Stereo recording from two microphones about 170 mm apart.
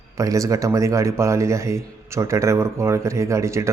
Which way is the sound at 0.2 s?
20° right (ahead or behind).